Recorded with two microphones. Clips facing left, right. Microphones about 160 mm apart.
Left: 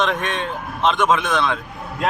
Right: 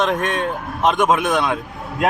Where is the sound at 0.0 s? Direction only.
45° right (ahead or behind).